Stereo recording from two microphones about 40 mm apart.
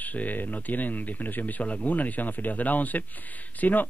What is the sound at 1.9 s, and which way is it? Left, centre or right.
Speech, left.